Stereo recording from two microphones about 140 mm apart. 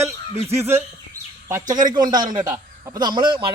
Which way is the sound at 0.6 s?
15° right (ahead or behind).